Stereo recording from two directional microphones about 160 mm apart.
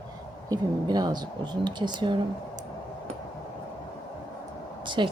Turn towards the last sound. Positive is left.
turn(degrees=-30)  # may be behind; listen again after turning